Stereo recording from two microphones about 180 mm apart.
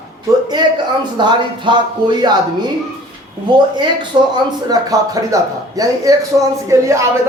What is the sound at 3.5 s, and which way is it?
Speech, 25° right (ahead or behind).